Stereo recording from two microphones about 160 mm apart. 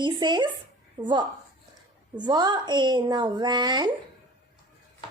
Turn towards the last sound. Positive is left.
turn(degrees=-25)  # may be behind; listen again after turning